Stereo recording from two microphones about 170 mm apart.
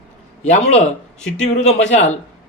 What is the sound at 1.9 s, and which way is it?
Speech, 45° left (ahead or behind).